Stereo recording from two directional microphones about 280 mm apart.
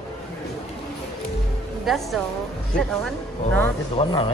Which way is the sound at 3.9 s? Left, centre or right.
Centre.